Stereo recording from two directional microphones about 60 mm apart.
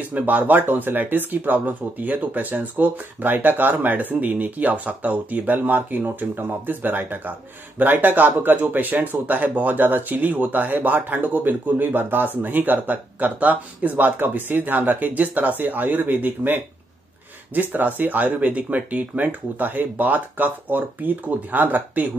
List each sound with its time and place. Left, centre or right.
0.1 s speech: right